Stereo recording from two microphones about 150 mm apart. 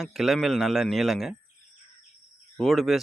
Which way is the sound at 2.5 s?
Centre (ahead or behind).